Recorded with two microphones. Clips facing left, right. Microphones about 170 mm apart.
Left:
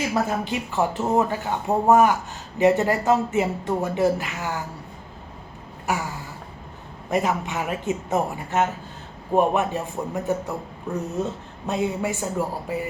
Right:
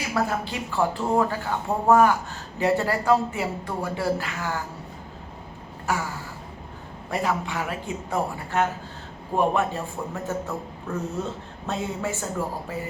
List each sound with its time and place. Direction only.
0.1 s speech: 20° left (ahead or behind)
5.9 s speech: 15° left (ahead or behind)
7.1 s speech: 20° left (ahead or behind)